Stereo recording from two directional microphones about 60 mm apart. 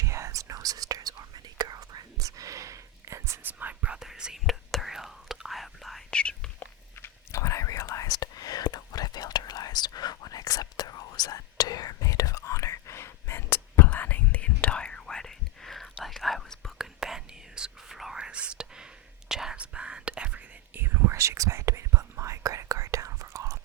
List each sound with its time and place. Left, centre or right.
0.0 s whispering: right
3.4 s whispering: right
3.9 s whispering: centre
6.1 s whispering: centre
6.9 s whispering: left; by 16.8 s centre
16.8 s whispering: centre
18.2 s whispering: centre
19.5 s whispering: centre
20.7 s whispering: right